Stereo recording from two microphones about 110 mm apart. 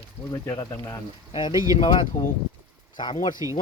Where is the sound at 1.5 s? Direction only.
35° right (ahead or behind).